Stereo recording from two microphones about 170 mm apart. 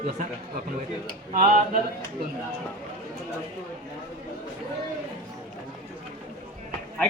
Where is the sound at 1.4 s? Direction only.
50° right (ahead or behind).